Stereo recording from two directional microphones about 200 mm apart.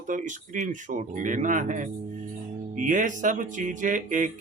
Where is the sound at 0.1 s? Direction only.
40° right (ahead or behind).